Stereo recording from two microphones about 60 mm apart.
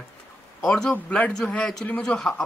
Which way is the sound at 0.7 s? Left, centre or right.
Centre.